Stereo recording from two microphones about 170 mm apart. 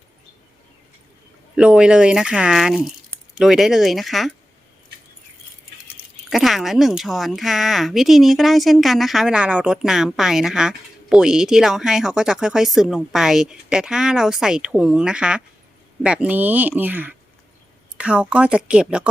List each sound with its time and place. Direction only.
1.5 s a woman's voice: 5° right (ahead or behind)
6.0 s a sound: 10° right (ahead or behind)
6.3 s a woman's voice: centre (ahead or behind)